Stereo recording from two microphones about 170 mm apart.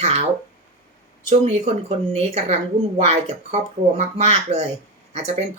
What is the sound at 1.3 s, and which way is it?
Speech, 35° right (ahead or behind).